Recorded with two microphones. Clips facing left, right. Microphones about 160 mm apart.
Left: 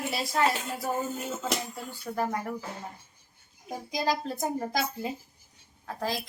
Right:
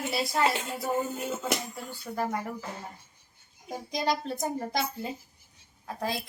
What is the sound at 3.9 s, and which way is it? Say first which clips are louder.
A woman's voice: even; 5° left (ahead or behind).